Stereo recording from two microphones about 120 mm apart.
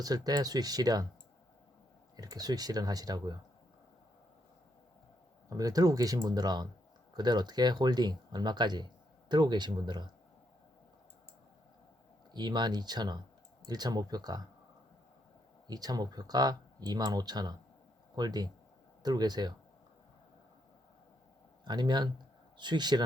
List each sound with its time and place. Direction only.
0.0 s speech: 30° right (ahead or behind)
2.1 s speech: 35° right (ahead or behind)
5.5 s speech: 30° right (ahead or behind)
12.3 s speech: 35° right (ahead or behind)
15.6 s speech: 35° right (ahead or behind)
21.6 s speech: 40° right (ahead or behind)